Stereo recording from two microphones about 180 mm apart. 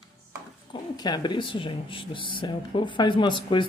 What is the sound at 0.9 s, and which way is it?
Speech, 25° left (ahead or behind).